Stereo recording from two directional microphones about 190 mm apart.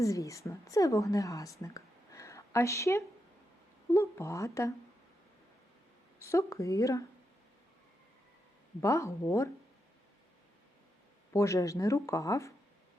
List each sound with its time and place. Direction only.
0.0 s a woman's voice: 15° left (ahead or behind)
6.1 s speech: 15° left (ahead or behind)
8.8 s speech: 15° left (ahead or behind)
11.3 s speech: 15° left (ahead or behind)